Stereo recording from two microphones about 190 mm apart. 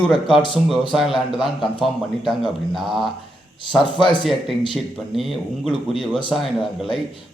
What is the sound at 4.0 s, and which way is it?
Speech, 25° left (ahead or behind).